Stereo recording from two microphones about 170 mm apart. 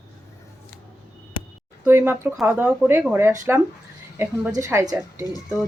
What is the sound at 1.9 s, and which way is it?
Speech, 15° right (ahead or behind).